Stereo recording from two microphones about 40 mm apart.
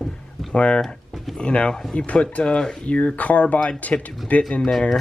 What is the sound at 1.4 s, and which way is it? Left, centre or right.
Speech, left.